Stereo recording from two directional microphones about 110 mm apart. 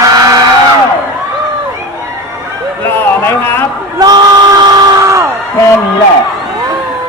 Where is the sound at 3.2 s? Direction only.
20° left (ahead or behind).